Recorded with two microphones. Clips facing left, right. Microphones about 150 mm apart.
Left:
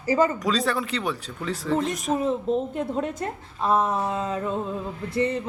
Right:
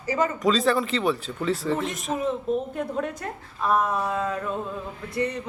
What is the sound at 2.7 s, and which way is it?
A woman's voice, 25° left (ahead or behind).